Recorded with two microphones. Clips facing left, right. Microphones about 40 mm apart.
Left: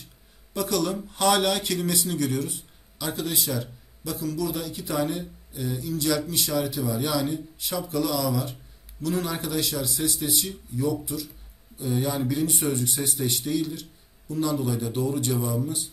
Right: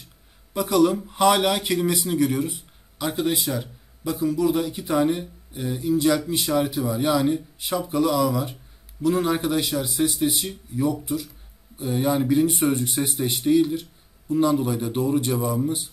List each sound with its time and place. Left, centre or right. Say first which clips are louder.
0.6 s speech: right 7 dB; centre